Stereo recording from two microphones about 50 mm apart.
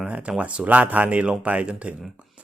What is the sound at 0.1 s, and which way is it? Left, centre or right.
A man's voice, right.